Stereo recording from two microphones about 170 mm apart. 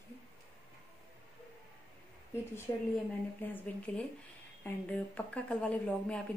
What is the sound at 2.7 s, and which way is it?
Speech, 15° left (ahead or behind).